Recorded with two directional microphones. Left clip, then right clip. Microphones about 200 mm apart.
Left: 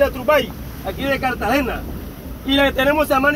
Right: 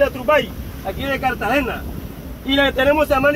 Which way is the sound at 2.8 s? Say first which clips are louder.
Right 1 dB; 40° left (ahead or behind).